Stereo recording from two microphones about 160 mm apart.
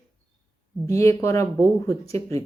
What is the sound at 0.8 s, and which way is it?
Speech, 20° left (ahead or behind).